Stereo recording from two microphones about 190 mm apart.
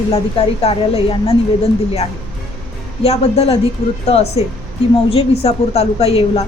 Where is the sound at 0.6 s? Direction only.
30° left (ahead or behind).